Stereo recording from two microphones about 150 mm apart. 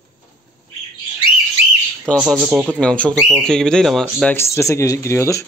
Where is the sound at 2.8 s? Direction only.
10° left (ahead or behind).